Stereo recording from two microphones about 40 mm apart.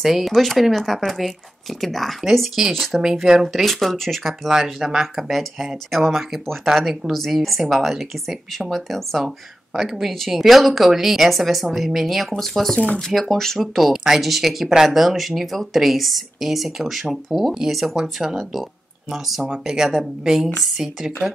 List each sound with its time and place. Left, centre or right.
0.0 s speech: centre
2.6 s speech: centre
3.5 s speech: centre
4.5 s speech: centre
18.2 s speech: centre
19.5 s speech: centre